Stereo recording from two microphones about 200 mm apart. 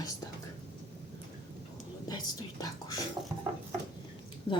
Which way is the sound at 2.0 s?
20° left (ahead or behind).